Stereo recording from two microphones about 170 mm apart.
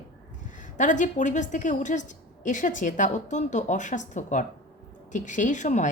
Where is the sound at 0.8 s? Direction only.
50° left (ahead or behind).